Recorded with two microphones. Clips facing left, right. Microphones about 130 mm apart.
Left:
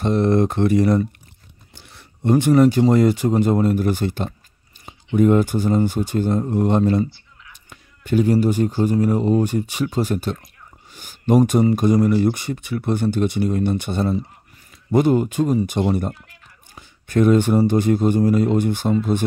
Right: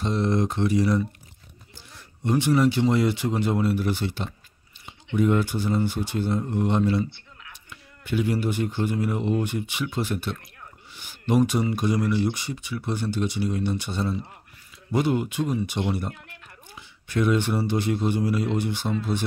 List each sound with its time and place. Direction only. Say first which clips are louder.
0.0 s speech: left 7 dB; 55° left (ahead or behind)
7.2 s a sound: right 1 dB; 65° right (ahead or behind)
7.7 s speech: left 8 dB; 45° left (ahead or behind)